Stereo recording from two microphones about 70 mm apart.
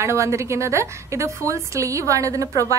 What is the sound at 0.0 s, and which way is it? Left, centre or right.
A woman's voice, right.